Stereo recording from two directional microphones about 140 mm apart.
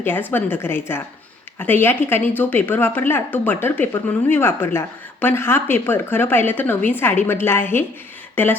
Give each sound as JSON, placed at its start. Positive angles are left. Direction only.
{"t": 0.0, "sound": "speech", "side_deg": 15}